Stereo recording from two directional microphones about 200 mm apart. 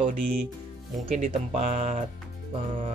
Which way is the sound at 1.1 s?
35° right (ahead or behind).